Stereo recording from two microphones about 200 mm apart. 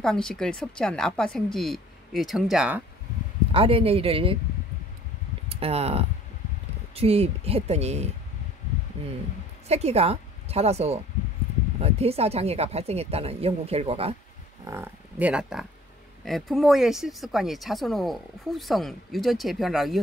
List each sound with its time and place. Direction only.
0.0 s speech: 5° left (ahead or behind)
3.5 s speech: 25° right (ahead or behind)
5.5 s speech: 30° right (ahead or behind)
9.7 s speech: 30° right (ahead or behind)
14.6 s speech: 15° right (ahead or behind)